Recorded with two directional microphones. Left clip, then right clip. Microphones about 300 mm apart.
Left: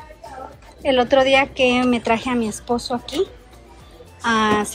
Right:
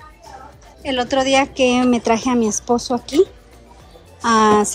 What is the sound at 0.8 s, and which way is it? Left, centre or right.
A woman's voice, centre.